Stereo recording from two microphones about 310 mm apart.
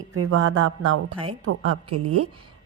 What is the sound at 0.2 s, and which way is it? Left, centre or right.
A woman's voice, right.